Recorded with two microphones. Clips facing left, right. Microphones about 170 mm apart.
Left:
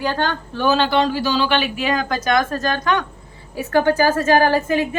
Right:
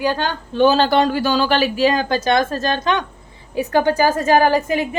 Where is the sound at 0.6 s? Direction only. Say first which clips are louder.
Right 4 dB; 30° right (ahead or behind).